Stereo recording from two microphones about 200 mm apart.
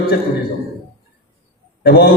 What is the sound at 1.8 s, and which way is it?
Speech, 50° left (ahead or behind).